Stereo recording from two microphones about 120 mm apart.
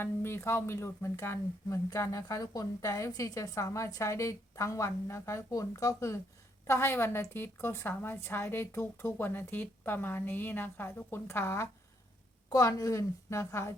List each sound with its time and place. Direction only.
0.0 s speech: 20° left (ahead or behind)